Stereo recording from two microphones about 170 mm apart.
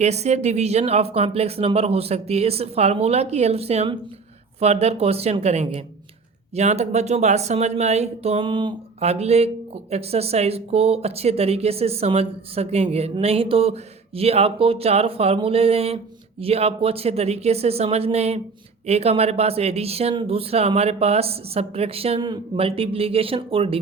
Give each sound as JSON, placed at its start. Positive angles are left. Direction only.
{"t": 0.0, "sound": "speech", "side_deg": -40}